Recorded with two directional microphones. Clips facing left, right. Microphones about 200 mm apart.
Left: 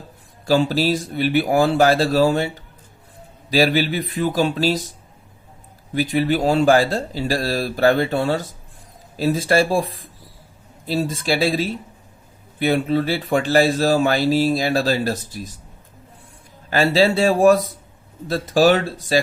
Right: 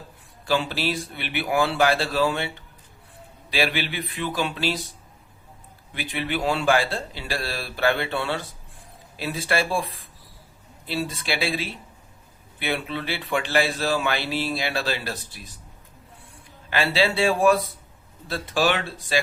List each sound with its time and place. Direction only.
0.4 s speech: 40° left (ahead or behind)
5.9 s speech: 40° left (ahead or behind)
16.6 s speech: 40° left (ahead or behind)